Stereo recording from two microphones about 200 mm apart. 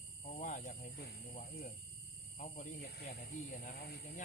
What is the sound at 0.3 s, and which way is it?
Snake, 35° left (ahead or behind).